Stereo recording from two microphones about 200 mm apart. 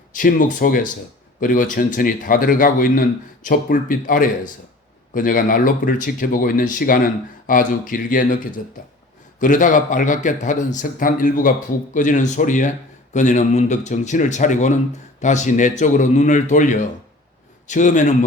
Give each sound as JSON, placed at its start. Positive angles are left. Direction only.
{"t": 0.1, "sound": "a man's voice", "side_deg": 40}
{"t": 9.4, "sound": "a man's voice", "side_deg": 40}